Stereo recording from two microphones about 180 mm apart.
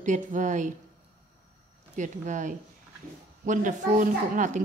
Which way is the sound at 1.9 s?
40° right (ahead or behind).